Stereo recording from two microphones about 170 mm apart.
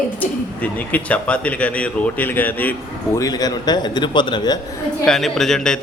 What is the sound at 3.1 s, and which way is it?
Speech, 20° left (ahead or behind).